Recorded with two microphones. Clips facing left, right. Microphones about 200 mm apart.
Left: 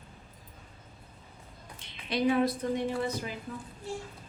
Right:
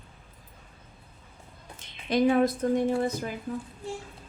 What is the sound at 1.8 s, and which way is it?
A woman's voice, 45° right (ahead or behind).